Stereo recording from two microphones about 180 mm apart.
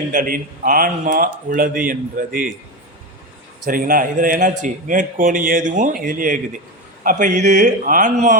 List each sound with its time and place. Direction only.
0.1 s speech: 45° right (ahead or behind)
3.7 s speech: 50° right (ahead or behind)